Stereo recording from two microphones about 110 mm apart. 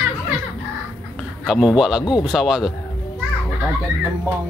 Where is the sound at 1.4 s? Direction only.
5° right (ahead or behind).